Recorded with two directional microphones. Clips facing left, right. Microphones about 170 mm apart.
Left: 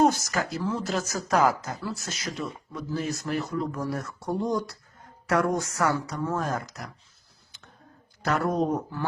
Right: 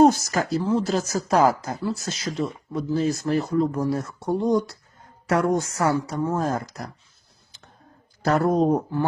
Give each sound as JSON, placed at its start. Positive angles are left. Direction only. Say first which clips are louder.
{"t": 0.0, "sound": "speech", "louder": "right 6 dB", "side_deg": -30}
{"t": 8.2, "sound": "speech", "louder": "right 5 dB", "side_deg": -35}